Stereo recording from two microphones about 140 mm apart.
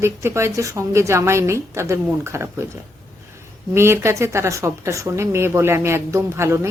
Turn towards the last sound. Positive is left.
turn(degrees=-20)  # may be behind; listen again after turning